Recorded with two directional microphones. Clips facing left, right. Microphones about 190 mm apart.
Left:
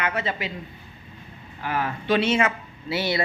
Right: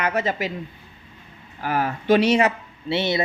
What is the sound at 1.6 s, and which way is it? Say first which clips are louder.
Speech: right 3 dB; 40° right (ahead or behind).